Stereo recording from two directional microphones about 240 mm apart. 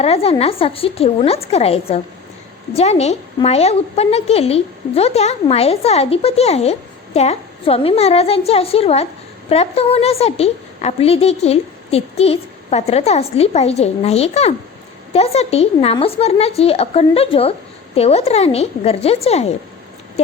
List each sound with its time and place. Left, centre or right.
0.0 s a woman's voice: left